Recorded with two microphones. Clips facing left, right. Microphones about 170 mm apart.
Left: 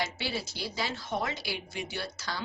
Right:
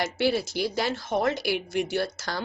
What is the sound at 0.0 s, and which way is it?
Speech, 50° right (ahead or behind).